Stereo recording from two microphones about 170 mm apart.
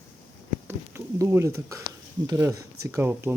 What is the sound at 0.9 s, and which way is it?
Speech, 15° right (ahead or behind).